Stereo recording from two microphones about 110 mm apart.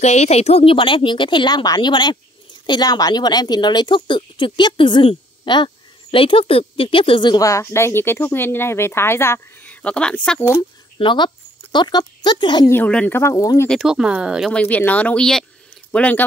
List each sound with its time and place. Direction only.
0.0 s a woman's voice: 90° left; by 7.4 s 45° left (ahead or behind)
7.4 s speech: 25° left (ahead or behind); by 10.4 s 5° left (ahead or behind)
11.0 s a woman's voice: 50° left (ahead or behind)
12.6 s speech: 20° left (ahead or behind)
13.2 s speech: 30° left (ahead or behind)
13.8 s speech: 5° right (ahead or behind)
14.5 s speech: 15° left (ahead or behind)